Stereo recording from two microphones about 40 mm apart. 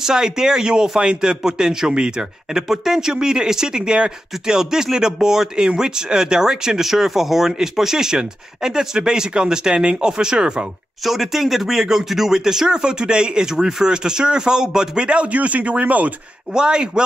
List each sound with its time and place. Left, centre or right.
0.0 s speech: centre
11.1 s speech: centre; by 16.1 s right
16.5 s speech: right